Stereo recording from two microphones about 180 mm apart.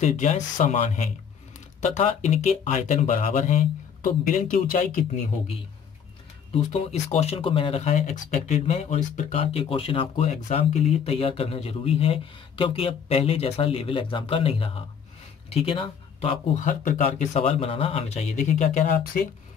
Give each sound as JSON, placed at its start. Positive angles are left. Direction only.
{"t": 0.0, "sound": "speech", "side_deg": 40}
{"t": 6.7, "sound": "speech", "side_deg": 40}
{"t": 16.6, "sound": "speech", "side_deg": 45}